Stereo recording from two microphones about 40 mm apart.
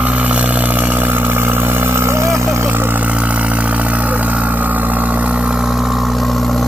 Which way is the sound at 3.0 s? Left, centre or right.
Right.